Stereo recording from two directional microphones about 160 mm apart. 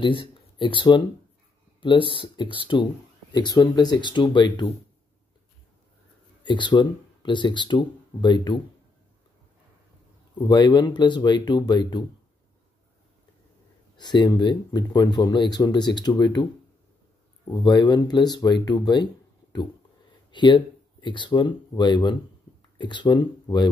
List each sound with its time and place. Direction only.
0.0 s speech: 30° left (ahead or behind)
6.4 s speech: 30° left (ahead or behind)
10.3 s speech: 30° left (ahead or behind)
13.9 s speech: 30° left (ahead or behind)
17.5 s speech: 25° left (ahead or behind)
20.2 s speech: 30° left (ahead or behind)